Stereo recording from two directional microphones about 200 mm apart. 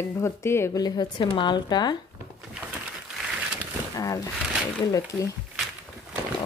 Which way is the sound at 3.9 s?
15° left (ahead or behind).